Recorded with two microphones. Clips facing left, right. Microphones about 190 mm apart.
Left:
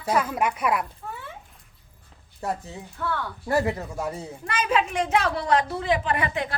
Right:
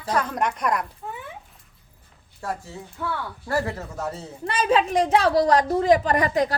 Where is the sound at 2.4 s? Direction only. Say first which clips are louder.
Left 1 dB; 20° left (ahead or behind).